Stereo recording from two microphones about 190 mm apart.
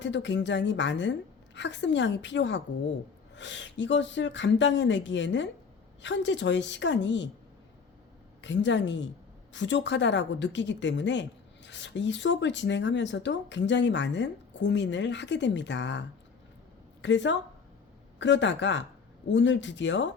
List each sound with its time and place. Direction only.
0.0 s a woman's voice: 70° left (ahead or behind)
8.4 s a woman's voice: 70° left (ahead or behind)